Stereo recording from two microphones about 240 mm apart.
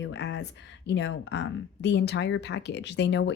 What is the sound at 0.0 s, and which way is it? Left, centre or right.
Speech, left.